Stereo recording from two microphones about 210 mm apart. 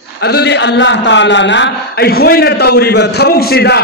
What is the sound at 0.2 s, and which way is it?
A man's voice, 50° left (ahead or behind).